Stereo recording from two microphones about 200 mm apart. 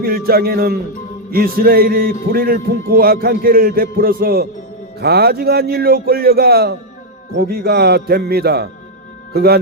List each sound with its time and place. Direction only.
0.0 s a man's voice: 50° right (ahead or behind)